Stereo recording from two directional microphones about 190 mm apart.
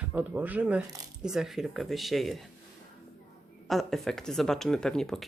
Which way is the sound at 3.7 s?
Centre (ahead or behind).